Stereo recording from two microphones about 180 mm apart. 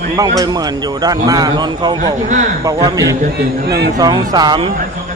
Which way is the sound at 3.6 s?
65° right (ahead or behind).